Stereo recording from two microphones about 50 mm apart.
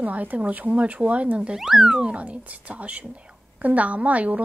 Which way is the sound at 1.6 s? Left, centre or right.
Centre.